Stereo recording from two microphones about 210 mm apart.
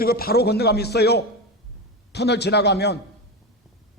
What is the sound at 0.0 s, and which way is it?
A man's voice, 45° left (ahead or behind).